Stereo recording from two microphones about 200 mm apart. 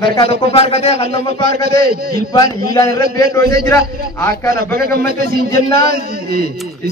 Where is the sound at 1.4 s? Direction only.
50° right (ahead or behind).